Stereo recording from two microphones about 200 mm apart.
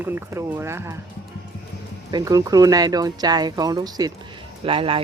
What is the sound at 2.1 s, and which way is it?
Speech, 15° right (ahead or behind).